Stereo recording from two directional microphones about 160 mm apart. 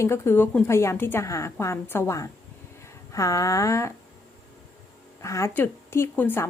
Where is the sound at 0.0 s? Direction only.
15° left (ahead or behind).